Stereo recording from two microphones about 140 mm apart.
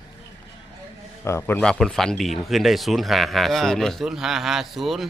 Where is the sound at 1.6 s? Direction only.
5° left (ahead or behind).